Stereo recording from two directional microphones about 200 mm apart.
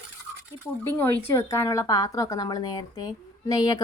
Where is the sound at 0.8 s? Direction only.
10° left (ahead or behind).